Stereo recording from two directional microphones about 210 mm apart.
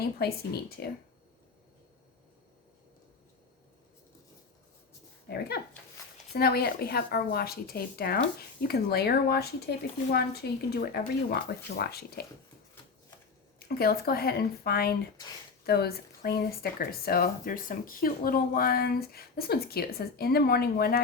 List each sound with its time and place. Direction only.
0.2 s speech: 50° left (ahead or behind)
5.3 s speech: 50° left (ahead or behind)
13.7 s speech: 45° left (ahead or behind)